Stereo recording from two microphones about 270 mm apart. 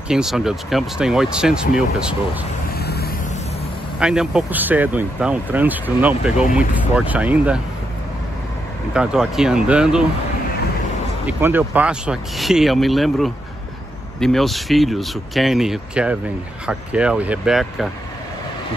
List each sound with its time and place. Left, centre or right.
0.1 s speech: centre
2.8 s vehicle: left
4.0 s speech: centre
8.9 s speech: centre
11.2 s speech: centre